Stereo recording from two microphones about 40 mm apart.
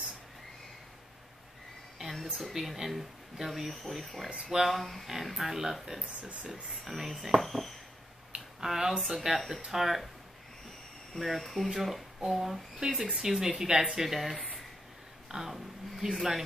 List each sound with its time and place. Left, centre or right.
2.0 s a sound: centre
2.4 s speech: centre
8.5 s speech: centre
11.1 s speech: centre
12.7 s speech: centre
14.3 s a sound: left
15.3 s speech: centre